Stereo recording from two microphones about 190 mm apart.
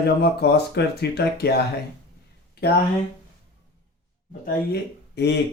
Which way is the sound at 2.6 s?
60° left (ahead or behind).